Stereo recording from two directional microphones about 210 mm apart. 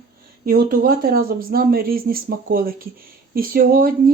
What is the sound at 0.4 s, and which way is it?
Speech, 45° right (ahead or behind).